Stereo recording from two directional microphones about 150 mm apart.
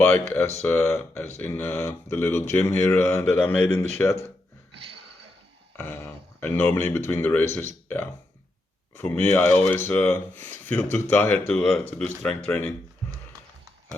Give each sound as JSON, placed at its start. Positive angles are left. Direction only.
{"t": 0.0, "sound": "speech", "side_deg": 15}
{"t": 5.7, "sound": "a sound", "side_deg": 15}
{"t": 6.4, "sound": "speech", "side_deg": 10}